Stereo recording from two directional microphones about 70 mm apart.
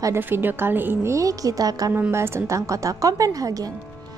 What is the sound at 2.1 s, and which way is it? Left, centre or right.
A woman's voice, right.